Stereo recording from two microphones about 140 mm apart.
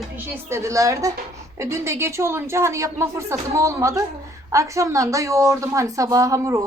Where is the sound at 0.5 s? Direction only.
20° right (ahead or behind).